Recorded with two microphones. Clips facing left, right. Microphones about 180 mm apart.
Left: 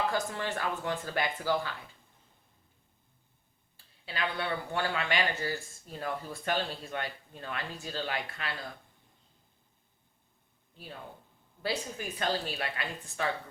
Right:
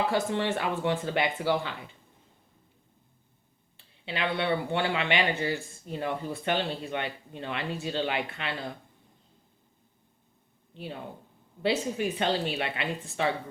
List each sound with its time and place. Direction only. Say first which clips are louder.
0.1 s speech: right 6 dB; 20° right (ahead or behind)
4.0 s speech: right 5 dB; 20° right (ahead or behind)
11.6 s speech: right 8 dB; 20° right (ahead or behind)